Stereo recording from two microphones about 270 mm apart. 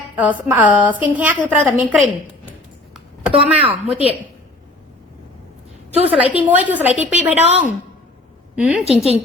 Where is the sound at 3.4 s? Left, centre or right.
Right.